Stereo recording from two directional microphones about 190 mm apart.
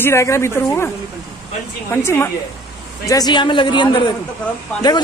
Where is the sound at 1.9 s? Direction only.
15° left (ahead or behind).